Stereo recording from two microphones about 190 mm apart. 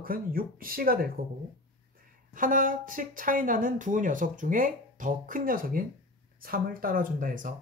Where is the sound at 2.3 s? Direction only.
45° right (ahead or behind).